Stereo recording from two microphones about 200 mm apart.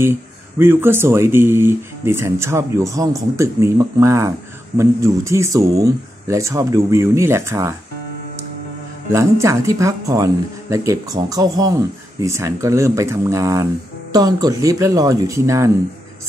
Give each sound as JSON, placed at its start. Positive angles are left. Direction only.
{"t": 0.0, "sound": "speech", "side_deg": -10}
{"t": 9.1, "sound": "speech", "side_deg": -15}